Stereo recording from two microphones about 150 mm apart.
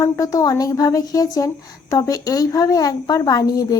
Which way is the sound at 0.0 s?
20° left (ahead or behind).